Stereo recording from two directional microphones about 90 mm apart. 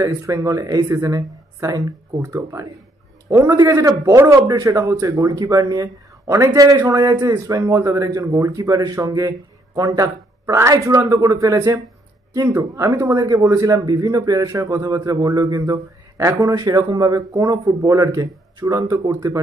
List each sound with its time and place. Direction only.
0.0 s speech: 40° right (ahead or behind)